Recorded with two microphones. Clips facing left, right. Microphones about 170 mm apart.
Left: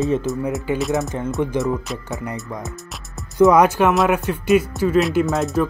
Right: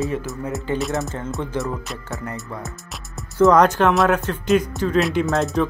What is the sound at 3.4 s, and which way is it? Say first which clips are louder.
Speech: left 1 dB; 10° left (ahead or behind).